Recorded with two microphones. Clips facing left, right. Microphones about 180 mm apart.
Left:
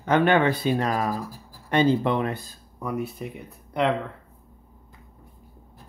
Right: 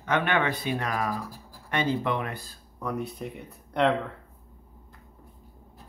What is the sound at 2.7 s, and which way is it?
Speech, 5° left (ahead or behind).